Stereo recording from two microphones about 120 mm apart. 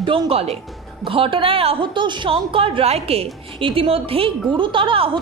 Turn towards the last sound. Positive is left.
turn(degrees=-45)  # may be behind; listen again after turning